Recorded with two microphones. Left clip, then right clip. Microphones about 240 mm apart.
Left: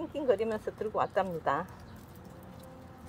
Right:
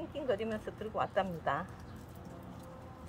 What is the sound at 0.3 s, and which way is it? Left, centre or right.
Speech, left.